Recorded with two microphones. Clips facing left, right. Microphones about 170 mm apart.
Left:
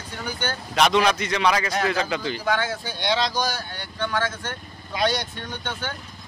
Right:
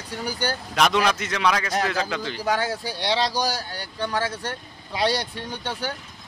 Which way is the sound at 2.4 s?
35° right (ahead or behind).